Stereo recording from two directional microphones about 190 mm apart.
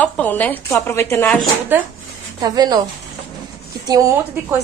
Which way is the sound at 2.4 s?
20° right (ahead or behind).